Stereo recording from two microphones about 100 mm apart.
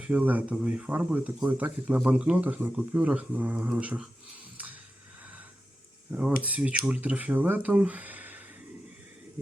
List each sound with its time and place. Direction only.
0.0 s speech: 15° right (ahead or behind)
4.5 s music: 15° right (ahead or behind)
6.1 s speech: 15° right (ahead or behind)